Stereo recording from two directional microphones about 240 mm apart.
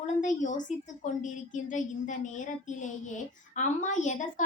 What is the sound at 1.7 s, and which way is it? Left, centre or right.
Child singing, left.